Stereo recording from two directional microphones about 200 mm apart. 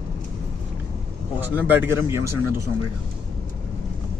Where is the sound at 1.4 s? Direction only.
10° right (ahead or behind).